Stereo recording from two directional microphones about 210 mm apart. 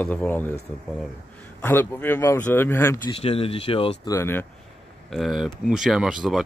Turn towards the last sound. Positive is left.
turn(degrees=0)  # may be behind; listen again after turning